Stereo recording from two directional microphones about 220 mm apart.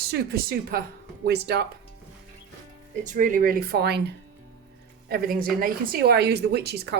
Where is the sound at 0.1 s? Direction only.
40° right (ahead or behind).